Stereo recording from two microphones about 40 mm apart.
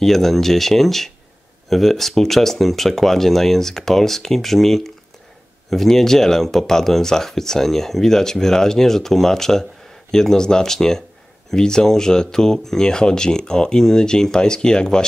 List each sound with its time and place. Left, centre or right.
0.0 s speech: centre